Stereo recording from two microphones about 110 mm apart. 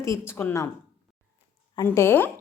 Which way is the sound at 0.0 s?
25° left (ahead or behind).